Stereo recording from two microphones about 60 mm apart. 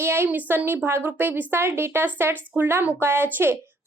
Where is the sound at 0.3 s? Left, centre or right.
Right.